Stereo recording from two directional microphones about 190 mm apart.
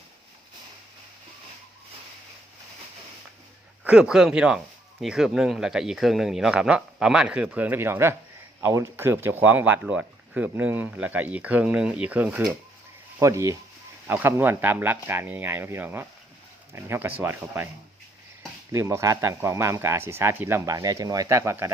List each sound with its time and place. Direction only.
3.8 s speech: 5° right (ahead or behind)
18.7 s speech: 15° right (ahead or behind)